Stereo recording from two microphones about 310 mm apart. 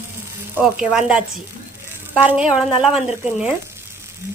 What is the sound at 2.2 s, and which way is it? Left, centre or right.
Speech, centre.